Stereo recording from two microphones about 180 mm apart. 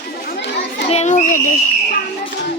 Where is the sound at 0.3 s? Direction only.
70° left (ahead or behind).